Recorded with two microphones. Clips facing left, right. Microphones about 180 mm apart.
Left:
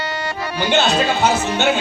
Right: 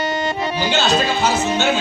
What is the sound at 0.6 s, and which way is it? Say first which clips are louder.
Speech: left 2 dB; 55° left (ahead or behind).